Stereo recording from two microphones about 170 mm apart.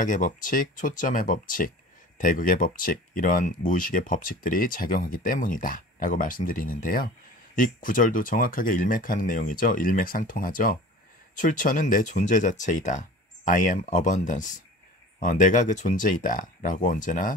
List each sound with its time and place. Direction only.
0.0 s speech: 50° left (ahead or behind)